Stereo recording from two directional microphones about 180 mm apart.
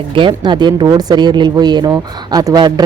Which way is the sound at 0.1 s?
25° right (ahead or behind).